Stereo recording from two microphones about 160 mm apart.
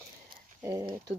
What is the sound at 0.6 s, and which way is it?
Speech, 20° right (ahead or behind).